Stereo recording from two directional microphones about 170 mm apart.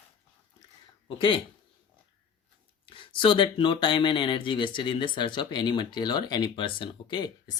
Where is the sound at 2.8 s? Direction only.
30° left (ahead or behind).